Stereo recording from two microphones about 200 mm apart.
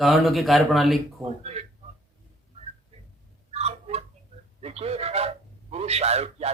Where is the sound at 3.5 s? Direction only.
30° right (ahead or behind).